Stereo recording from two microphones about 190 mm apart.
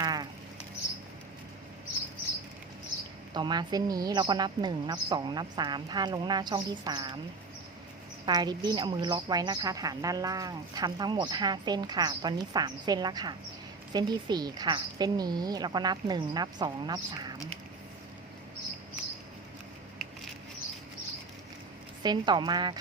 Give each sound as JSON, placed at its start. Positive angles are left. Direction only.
{"t": 0.0, "sound": "a sound", "side_deg": -20}
{"t": 3.3, "sound": "a woman's voice", "side_deg": -25}
{"t": 8.3, "sound": "a woman's voice", "side_deg": -20}
{"t": 22.0, "sound": "a woman's voice", "side_deg": -20}